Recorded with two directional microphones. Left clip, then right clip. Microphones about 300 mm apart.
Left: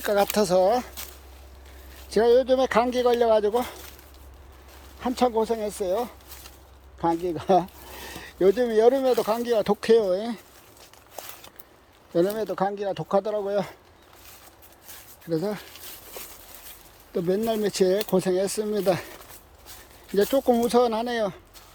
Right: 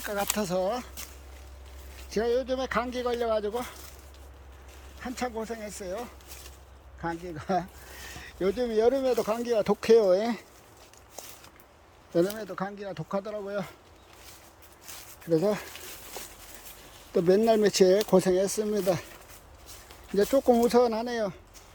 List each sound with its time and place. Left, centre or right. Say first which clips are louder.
0.0 s speech: left 8 dB; centre
2.0 s speech: left 8 dB; centre
4.9 s speech: left 10 dB; centre
12.5 s speech: left 9 dB; centre
15.3 s speech: right 2 dB; centre
17.2 s speech: right 3 dB; centre
20.1 s speech: left 2 dB; centre